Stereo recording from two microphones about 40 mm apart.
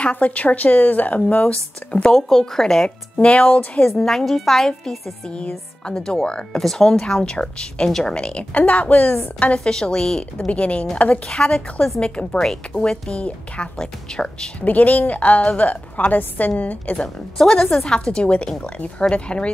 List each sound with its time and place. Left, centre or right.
0.0 s speech: left
2.0 s a woman's voice: centre
3.2 s speech: left
4.0 s a woman's voice: centre
6.6 s a woman's voice: centre
6.9 s a woman's voice: centre
8.5 s a woman's voice: left
9.6 s a woman's voice: centre
12.8 s a woman's voice: centre
13.1 s a woman's voice: left
14.6 s a woman's voice: left
17.0 s a woman's voice: centre